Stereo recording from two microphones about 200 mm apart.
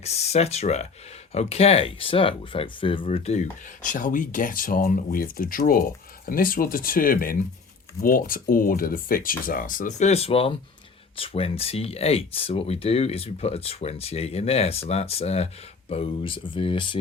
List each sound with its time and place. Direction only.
0.0 s speech: 30° left (ahead or behind)